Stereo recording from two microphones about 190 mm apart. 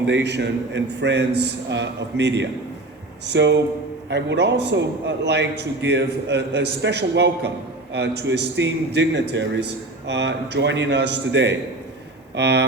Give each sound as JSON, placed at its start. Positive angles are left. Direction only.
{"t": 0.0, "sound": "a man's voice", "side_deg": -65}